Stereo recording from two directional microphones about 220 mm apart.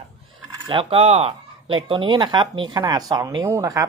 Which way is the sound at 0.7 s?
25° right (ahead or behind).